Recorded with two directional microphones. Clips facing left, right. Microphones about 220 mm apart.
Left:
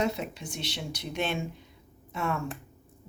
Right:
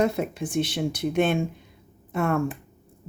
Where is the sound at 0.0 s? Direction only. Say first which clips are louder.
Right 6 dB; 50° right (ahead or behind).